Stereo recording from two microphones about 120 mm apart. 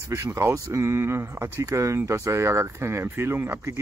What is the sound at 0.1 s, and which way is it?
Speech, 25° right (ahead or behind).